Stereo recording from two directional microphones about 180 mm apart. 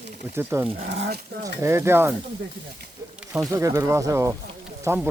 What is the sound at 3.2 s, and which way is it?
Snake, 5° right (ahead or behind).